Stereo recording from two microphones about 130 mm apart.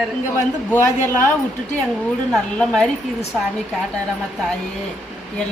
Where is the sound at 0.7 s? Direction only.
15° left (ahead or behind).